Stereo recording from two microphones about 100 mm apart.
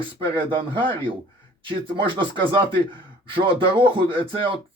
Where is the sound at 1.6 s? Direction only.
55° right (ahead or behind).